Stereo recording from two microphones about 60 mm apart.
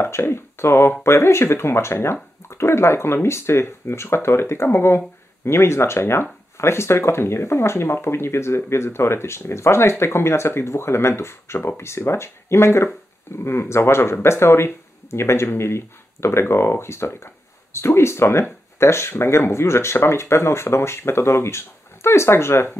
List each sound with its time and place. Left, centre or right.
0.0 s speech: left